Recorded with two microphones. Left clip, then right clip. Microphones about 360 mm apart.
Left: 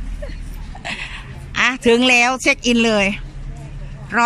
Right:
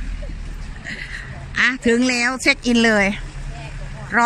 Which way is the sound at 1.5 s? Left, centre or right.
Centre.